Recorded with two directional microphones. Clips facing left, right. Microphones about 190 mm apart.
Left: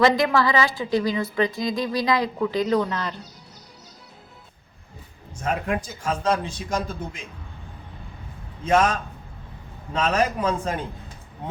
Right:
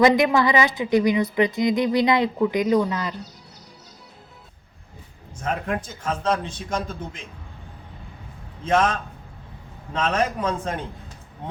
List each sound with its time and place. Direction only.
0.0 s a woman's voice: 20° right (ahead or behind)
5.4 s a man's voice: 5° left (ahead or behind)
8.6 s a man's voice: 10° left (ahead or behind)